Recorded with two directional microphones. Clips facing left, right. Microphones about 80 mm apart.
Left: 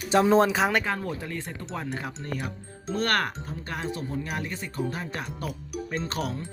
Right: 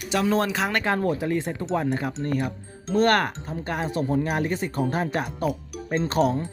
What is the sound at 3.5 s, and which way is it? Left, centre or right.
Speech, right.